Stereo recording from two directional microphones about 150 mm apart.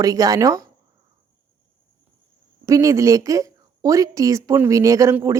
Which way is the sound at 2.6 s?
20° right (ahead or behind).